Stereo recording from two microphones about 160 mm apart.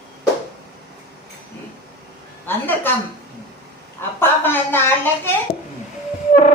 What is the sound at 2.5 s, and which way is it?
Speech, 15° left (ahead or behind).